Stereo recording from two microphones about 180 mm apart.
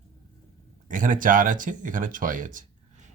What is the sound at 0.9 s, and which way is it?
Speech, 45° right (ahead or behind).